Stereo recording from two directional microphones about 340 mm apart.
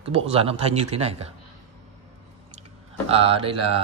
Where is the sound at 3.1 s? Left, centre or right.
Centre.